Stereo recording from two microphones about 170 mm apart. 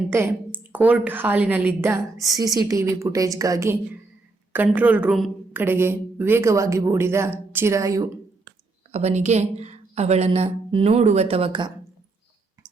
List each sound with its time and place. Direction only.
0.1 s a woman's voice: 10° right (ahead or behind)
5.5 s a woman's voice: 15° right (ahead or behind)
8.9 s speech: 40° right (ahead or behind)